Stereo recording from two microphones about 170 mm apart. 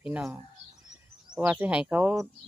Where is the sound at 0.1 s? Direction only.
Centre (ahead or behind).